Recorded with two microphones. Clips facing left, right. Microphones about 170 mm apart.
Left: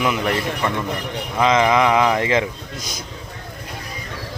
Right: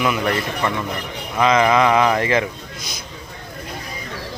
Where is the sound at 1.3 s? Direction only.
20° left (ahead or behind).